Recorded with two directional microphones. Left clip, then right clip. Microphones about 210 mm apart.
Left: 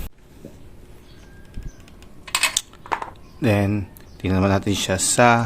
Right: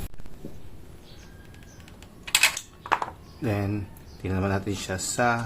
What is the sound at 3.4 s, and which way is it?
Speech, 45° left (ahead or behind).